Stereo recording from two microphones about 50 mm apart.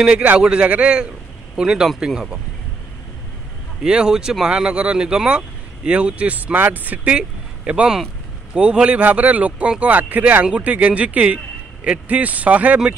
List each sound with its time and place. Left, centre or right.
0.4 s a man's voice: centre
1.6 s speech: centre
3.8 s speech: centre; by 7.2 s right
7.2 s a man's voice: right